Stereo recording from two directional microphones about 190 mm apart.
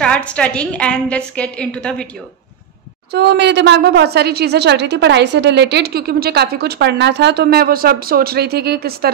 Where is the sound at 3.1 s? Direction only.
65° right (ahead or behind).